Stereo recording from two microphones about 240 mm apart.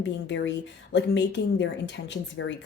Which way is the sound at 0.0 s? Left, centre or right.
Left.